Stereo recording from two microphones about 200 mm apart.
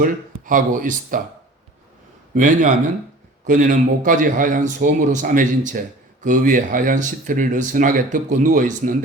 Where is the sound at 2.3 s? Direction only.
40° right (ahead or behind).